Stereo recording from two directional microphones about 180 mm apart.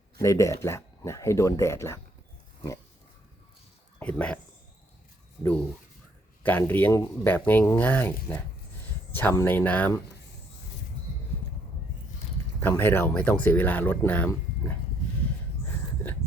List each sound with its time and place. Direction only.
0.2 s speech: 15° left (ahead or behind)
4.0 s speech: 10° left (ahead or behind)
5.4 s speech: 10° left (ahead or behind)
12.5 s speech: 15° left (ahead or behind)